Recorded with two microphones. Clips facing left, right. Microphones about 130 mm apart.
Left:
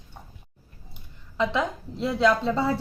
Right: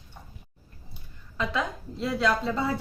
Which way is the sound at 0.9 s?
25° left (ahead or behind).